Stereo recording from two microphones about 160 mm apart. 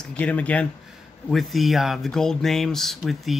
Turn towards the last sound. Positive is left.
turn(degrees=0)  # may be behind; listen again after turning